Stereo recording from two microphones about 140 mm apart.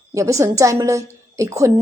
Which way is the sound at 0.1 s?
20° right (ahead or behind).